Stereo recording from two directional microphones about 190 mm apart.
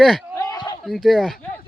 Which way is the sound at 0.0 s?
Centre (ahead or behind).